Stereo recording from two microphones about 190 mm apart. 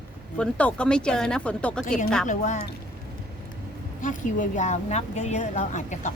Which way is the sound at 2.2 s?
40° left (ahead or behind).